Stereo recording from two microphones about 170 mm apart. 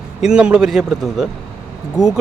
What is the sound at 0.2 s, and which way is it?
Speech, 5° right (ahead or behind).